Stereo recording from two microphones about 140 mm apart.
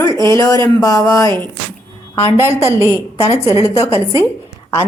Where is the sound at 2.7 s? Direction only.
20° left (ahead or behind).